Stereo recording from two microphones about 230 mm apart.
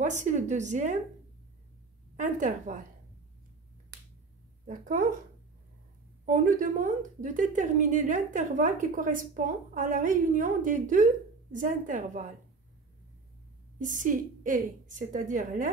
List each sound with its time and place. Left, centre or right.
0.0 s a woman's voice: right
2.1 s a woman's voice: right
4.6 s a woman's voice: right
6.2 s a woman's voice: right
13.8 s a woman's voice: right